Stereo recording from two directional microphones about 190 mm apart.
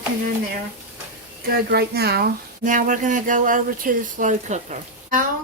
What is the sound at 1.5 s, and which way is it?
Speech, 55° right (ahead or behind).